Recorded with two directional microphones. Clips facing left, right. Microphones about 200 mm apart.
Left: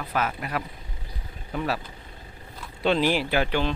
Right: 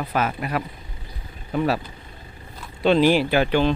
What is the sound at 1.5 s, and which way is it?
Speech, 35° right (ahead or behind).